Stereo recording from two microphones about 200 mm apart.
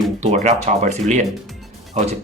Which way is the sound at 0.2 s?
35° right (ahead or behind).